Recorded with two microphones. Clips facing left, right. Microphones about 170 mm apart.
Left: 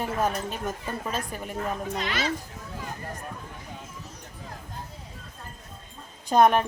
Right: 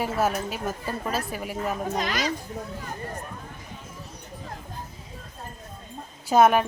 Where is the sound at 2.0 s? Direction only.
40° right (ahead or behind).